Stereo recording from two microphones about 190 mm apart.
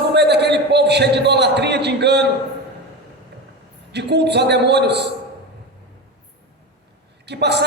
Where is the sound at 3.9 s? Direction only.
60° right (ahead or behind).